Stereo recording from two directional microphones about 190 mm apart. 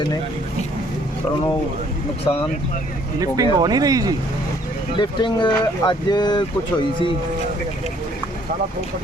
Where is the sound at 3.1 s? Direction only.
20° right (ahead or behind).